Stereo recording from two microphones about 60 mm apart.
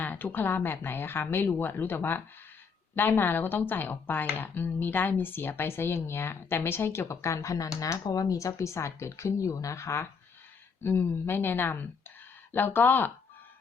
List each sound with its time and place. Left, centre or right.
0.0 s speech: left
10.8 s speech: left